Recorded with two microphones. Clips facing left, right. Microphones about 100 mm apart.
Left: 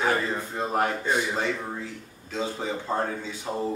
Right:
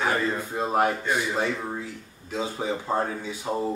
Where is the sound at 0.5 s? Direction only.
10° right (ahead or behind).